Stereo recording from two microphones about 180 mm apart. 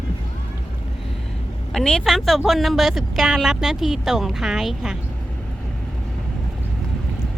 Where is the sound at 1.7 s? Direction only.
5° left (ahead or behind).